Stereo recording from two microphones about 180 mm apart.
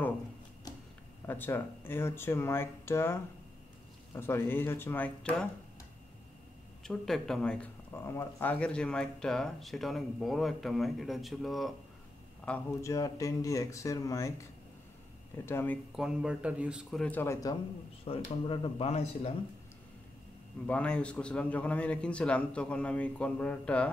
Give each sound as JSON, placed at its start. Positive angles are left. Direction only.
{"t": 1.2, "sound": "a man's voice", "side_deg": 10}
{"t": 6.8, "sound": "speech", "side_deg": 5}
{"t": 12.4, "sound": "a man's voice", "side_deg": 10}
{"t": 16.0, "sound": "speech", "side_deg": -5}
{"t": 18.1, "sound": "speech", "side_deg": 30}
{"t": 20.6, "sound": "a man's voice", "side_deg": 5}